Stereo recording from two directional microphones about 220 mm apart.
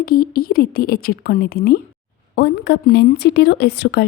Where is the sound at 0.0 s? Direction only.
45° left (ahead or behind).